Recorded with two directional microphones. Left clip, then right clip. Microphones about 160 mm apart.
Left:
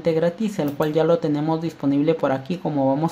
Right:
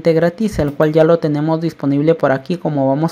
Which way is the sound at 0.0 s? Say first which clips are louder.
Right 7 dB; 40° right (ahead or behind).